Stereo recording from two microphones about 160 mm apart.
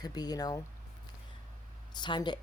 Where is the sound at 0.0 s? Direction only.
25° left (ahead or behind).